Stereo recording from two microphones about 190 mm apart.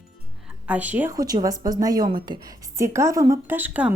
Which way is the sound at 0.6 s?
10° right (ahead or behind).